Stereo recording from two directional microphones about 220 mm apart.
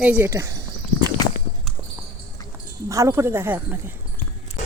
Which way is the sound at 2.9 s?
15° right (ahead or behind).